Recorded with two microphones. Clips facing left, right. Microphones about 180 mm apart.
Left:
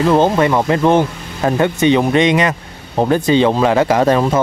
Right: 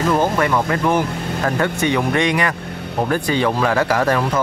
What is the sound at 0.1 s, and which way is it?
Speech, 25° left (ahead or behind).